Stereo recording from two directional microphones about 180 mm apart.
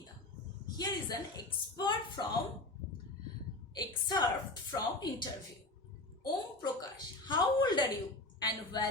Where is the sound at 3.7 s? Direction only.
20° left (ahead or behind).